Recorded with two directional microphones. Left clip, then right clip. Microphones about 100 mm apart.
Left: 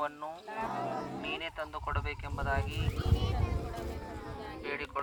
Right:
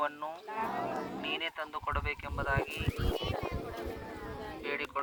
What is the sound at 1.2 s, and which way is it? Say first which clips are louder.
Speech: right 2 dB; 15° left (ahead or behind).